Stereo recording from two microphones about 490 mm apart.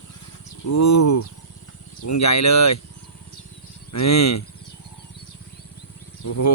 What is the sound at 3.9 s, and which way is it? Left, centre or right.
Speech, left.